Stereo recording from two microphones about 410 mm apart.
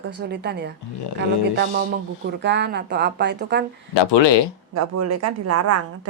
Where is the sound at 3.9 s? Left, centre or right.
Left.